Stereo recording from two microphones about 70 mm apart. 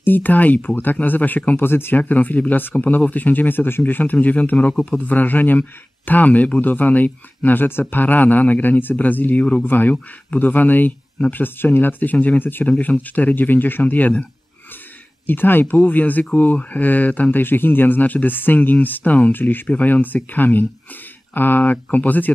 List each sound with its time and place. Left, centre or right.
0.0 s speech: left
15.2 s speech: left